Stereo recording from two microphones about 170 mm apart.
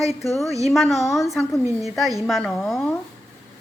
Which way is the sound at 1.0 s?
15° left (ahead or behind).